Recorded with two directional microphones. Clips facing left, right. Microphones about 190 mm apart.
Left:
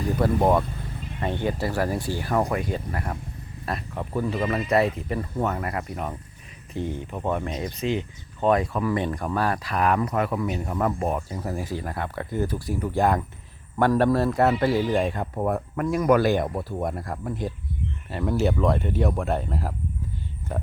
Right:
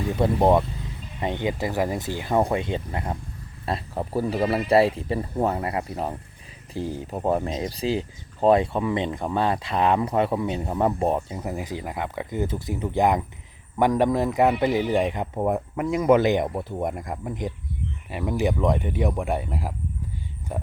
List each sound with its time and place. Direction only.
0.2 s speech: 20° right (ahead or behind)